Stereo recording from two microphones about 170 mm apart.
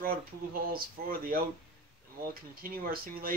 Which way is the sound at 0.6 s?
60° right (ahead or behind).